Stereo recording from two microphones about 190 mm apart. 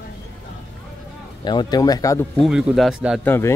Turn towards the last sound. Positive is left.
turn(degrees=10)  # may be behind; listen again after turning